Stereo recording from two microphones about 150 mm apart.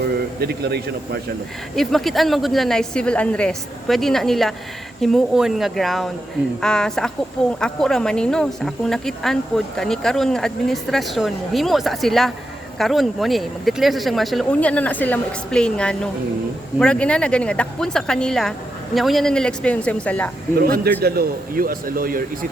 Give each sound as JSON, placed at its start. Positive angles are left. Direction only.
{"t": 0.0, "sound": "a man's voice", "side_deg": -90}
{"t": 1.7, "sound": "speech", "side_deg": 0}
{"t": 20.6, "sound": "a man's voice", "side_deg": -90}